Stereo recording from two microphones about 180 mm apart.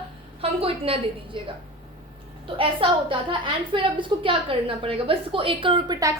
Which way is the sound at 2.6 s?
30° right (ahead or behind).